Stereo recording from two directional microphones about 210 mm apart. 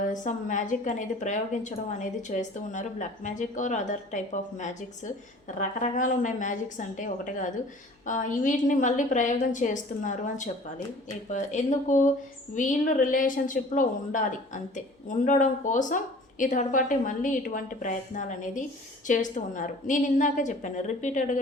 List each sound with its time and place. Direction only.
0.0 s a woman's voice: 40° left (ahead or behind)